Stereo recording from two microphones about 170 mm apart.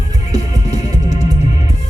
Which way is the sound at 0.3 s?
40° left (ahead or behind).